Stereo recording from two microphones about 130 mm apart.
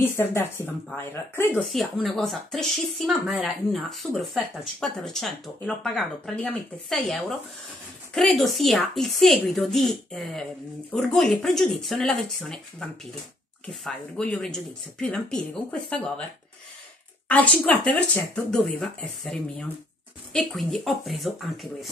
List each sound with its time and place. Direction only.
0.0 s speech: 15° left (ahead or behind)
1.6 s speech: centre (ahead or behind)
17.3 s speech: 15° left (ahead or behind)